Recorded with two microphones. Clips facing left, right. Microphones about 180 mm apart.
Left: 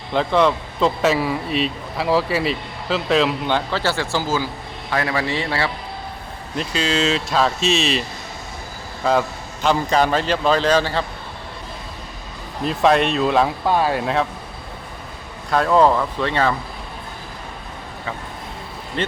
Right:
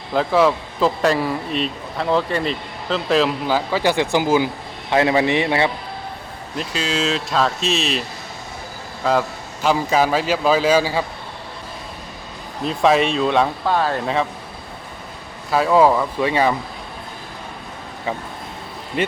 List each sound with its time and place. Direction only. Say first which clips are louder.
0.1 s a man's voice: right 1 dB; 5° right (ahead or behind); by 5.7 s 20° right (ahead or behind)
6.6 s speech: left 2 dB; centre (ahead or behind)
9.6 s a man's voice: even; 5° right (ahead or behind)
12.6 s speech: even; centre (ahead or behind)
13.7 s speech: left 1 dB; 10° left (ahead or behind)
14.0 s speech: even; centre (ahead or behind)
15.4 s speech: right 1 dB; 5° right (ahead or behind)
19.0 s a man's voice: right 3 dB; 10° right (ahead or behind)